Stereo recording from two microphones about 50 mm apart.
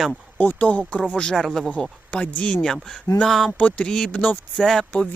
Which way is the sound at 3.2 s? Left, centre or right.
Centre.